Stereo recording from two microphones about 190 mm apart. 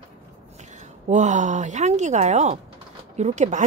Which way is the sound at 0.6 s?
40° right (ahead or behind).